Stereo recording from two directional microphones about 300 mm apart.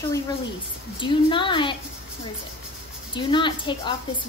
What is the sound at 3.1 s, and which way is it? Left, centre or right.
Speech, centre.